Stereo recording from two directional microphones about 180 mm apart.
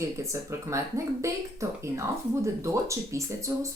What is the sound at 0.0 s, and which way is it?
Speech, 15° right (ahead or behind).